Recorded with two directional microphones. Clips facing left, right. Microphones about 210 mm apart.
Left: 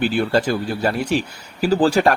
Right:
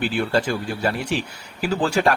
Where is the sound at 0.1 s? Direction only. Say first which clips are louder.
Left 3 dB; 40° left (ahead or behind).